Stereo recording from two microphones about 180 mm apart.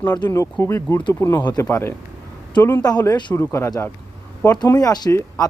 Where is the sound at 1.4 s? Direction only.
25° left (ahead or behind).